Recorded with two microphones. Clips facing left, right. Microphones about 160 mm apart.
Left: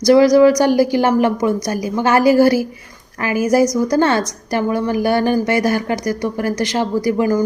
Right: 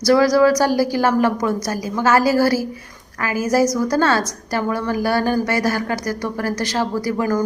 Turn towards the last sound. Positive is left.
turn(degrees=15)  # may be behind; listen again after turning